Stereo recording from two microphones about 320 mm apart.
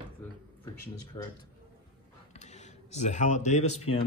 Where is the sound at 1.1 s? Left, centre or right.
Centre.